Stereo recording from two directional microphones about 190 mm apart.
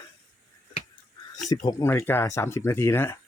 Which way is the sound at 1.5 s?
15° left (ahead or behind).